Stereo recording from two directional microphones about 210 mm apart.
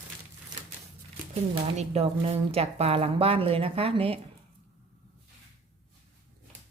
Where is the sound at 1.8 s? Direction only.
30° right (ahead or behind).